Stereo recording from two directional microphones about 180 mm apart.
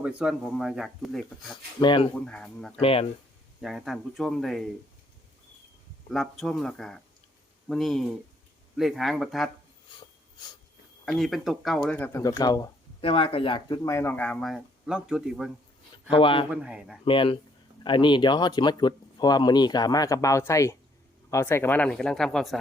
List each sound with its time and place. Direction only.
0.0 s speech: 5° right (ahead or behind)
1.8 s speech: 25° left (ahead or behind)
2.1 s speech: 5° left (ahead or behind)
2.8 s speech: 30° left (ahead or behind)
3.6 s speech: centre (ahead or behind)
6.1 s speech: centre (ahead or behind)
11.0 s speech: centre (ahead or behind)
11.9 s speech: 15° left (ahead or behind)
13.0 s speech: 30° left (ahead or behind); by 15.5 s 5° right (ahead or behind)
16.0 s speech: 30° left (ahead or behind)
16.5 s speech: 5° right (ahead or behind)
17.1 s speech: 30° left (ahead or behind); by 22.5 s 5° left (ahead or behind)